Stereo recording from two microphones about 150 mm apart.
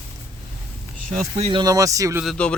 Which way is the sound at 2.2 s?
5° left (ahead or behind).